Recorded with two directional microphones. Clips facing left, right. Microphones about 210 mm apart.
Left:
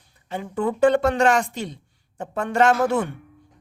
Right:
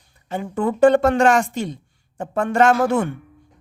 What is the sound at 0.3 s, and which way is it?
A woman's voice, 45° right (ahead or behind).